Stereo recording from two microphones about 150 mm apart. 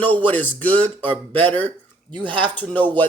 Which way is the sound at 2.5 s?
10° left (ahead or behind).